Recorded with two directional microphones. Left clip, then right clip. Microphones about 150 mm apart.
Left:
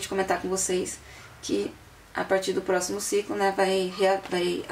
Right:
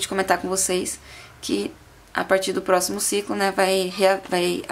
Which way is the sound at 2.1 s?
40° right (ahead or behind).